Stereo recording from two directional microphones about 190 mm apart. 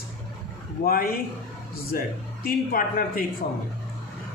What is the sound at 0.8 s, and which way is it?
Speech, 50° left (ahead or behind).